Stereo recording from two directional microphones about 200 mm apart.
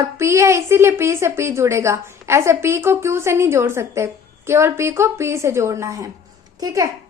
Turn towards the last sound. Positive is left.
turn(degrees=-15)  # may be behind; listen again after turning